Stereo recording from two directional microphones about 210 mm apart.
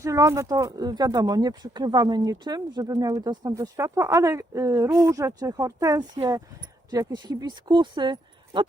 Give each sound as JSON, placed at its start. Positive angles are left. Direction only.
{"t": 0.0, "sound": "speech", "side_deg": -15}